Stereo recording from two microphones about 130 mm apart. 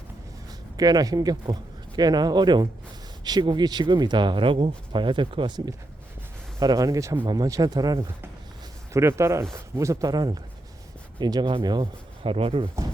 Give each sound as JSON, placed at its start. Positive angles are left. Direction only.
{"t": 0.8, "sound": "speech", "side_deg": -30}
{"t": 12.2, "sound": "speech", "side_deg": -45}